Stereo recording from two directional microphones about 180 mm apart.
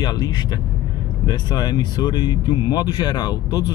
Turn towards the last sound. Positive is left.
turn(degrees=20)  # may be behind; listen again after turning